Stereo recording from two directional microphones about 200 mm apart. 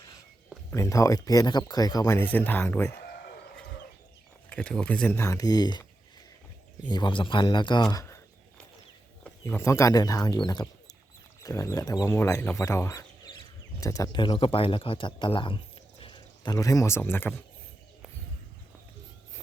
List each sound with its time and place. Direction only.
0.7 s speech: 15° left (ahead or behind)
4.4 s speech: 5° left (ahead or behind); by 5.8 s 20° left (ahead or behind)
6.8 s speech: 25° left (ahead or behind)
9.4 s speech: 15° left (ahead or behind)